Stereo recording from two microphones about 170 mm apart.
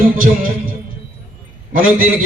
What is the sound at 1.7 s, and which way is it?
Speech, 55° right (ahead or behind).